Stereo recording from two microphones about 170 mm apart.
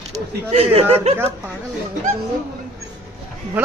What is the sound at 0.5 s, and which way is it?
Speech, 35° right (ahead or behind).